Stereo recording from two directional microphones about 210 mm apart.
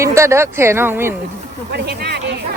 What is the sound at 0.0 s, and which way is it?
Speech, 15° right (ahead or behind).